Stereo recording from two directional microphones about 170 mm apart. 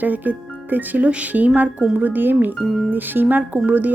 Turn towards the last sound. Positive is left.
turn(degrees=-10)  # may be behind; listen again after turning